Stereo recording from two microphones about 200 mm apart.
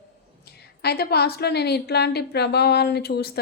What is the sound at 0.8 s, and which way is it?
A woman's voice, 55° left (ahead or behind).